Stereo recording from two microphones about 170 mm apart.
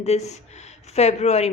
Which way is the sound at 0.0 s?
40° left (ahead or behind).